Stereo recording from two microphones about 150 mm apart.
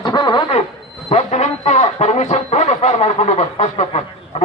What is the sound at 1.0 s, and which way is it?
Speech, 50° left (ahead or behind).